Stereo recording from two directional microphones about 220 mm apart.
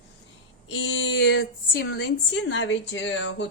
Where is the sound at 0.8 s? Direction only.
55° left (ahead or behind).